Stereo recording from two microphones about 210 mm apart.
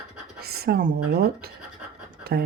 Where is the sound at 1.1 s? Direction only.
50° right (ahead or behind).